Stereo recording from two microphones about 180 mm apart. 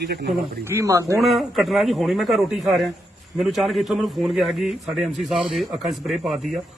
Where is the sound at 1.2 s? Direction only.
Centre (ahead or behind).